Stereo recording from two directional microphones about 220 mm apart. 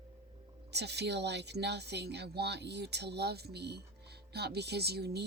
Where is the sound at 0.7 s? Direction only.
50° right (ahead or behind).